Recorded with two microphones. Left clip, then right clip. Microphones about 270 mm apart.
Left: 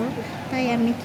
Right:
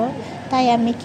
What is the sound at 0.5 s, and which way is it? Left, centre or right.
Speech, centre.